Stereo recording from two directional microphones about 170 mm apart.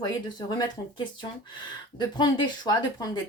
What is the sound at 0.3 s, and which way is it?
A woman's voice, 25° left (ahead or behind).